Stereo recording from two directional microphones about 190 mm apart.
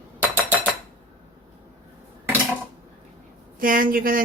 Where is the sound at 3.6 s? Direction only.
45° right (ahead or behind).